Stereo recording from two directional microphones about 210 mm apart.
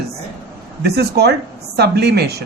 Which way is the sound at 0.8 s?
50° right (ahead or behind).